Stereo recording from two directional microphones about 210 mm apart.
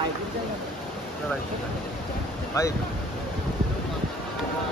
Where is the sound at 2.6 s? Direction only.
15° left (ahead or behind).